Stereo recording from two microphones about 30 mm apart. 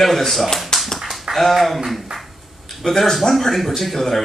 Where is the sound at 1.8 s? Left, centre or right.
Centre.